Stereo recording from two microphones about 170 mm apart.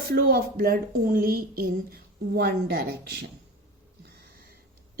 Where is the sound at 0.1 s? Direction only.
60° right (ahead or behind).